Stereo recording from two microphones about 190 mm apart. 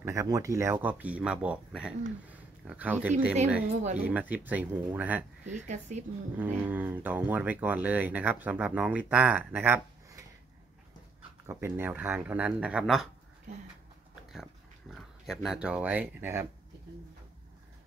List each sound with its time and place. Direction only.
0.0 s speech: 15° right (ahead or behind)
5.7 s speech: 40° right (ahead or behind)
6.6 s speech: 10° right (ahead or behind)
11.4 s speech: 10° right (ahead or behind)
14.3 s speech: centre (ahead or behind)